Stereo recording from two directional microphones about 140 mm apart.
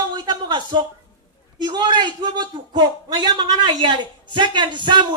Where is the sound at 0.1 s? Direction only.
35° right (ahead or behind).